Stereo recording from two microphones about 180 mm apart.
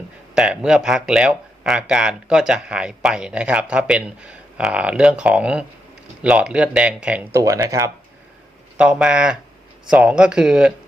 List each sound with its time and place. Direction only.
0.3 s speech: 5° right (ahead or behind)
7.4 s speech: 20° right (ahead or behind)
8.8 s speech: 5° right (ahead or behind)